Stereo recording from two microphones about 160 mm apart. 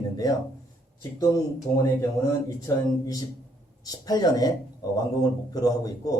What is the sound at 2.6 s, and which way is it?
A man's voice, 20° left (ahead or behind).